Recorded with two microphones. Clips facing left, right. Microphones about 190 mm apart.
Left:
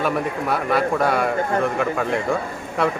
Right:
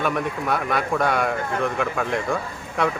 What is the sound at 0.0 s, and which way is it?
Speech, 5° left (ahead or behind).